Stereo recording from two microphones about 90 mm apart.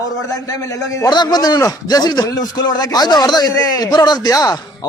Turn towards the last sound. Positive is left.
turn(degrees=40)  # may be behind; listen again after turning